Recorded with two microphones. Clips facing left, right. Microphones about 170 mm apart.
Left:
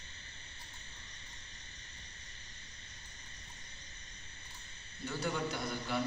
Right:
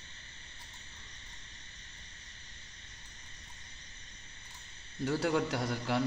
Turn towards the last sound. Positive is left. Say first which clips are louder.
# right 4 dB
turn(degrees=-90)